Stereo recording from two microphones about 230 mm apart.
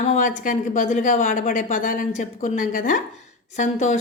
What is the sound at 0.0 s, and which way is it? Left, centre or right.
Speech, left.